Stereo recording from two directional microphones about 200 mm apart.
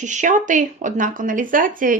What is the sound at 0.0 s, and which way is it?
A woman's voice, 40° right (ahead or behind).